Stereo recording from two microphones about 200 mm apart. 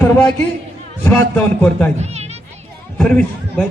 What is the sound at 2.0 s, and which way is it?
Speech, 35° right (ahead or behind).